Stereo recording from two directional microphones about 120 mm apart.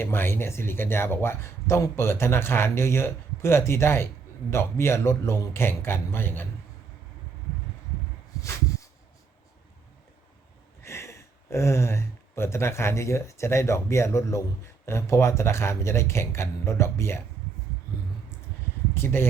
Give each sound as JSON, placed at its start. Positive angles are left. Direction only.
{"t": 0.0, "sound": "speech", "side_deg": 20}
{"t": 8.4, "sound": "a sound", "side_deg": 25}
{"t": 10.8, "sound": "speech", "side_deg": 25}
{"t": 18.9, "sound": "speech", "side_deg": 20}